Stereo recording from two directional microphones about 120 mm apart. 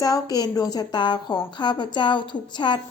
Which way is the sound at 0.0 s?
30° left (ahead or behind).